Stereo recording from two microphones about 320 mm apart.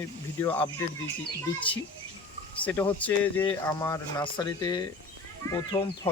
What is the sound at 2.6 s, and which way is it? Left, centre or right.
Speech, centre.